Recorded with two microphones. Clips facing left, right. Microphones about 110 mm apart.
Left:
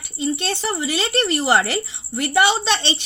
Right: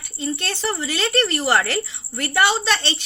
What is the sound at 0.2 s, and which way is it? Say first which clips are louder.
A woman's voice: left 3 dB; 15° left (ahead or behind).